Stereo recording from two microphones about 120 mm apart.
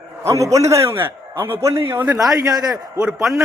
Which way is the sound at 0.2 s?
25° right (ahead or behind).